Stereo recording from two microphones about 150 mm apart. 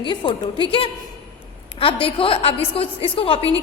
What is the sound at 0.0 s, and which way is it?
A woman's voice, 30° left (ahead or behind).